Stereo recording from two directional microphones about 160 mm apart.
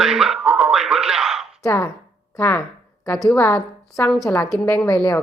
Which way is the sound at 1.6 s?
15° left (ahead or behind).